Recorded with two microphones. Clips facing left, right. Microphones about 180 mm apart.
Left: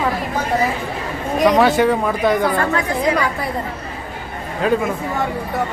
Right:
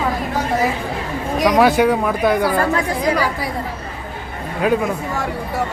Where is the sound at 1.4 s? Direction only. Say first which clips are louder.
Even; 5° right (ahead or behind).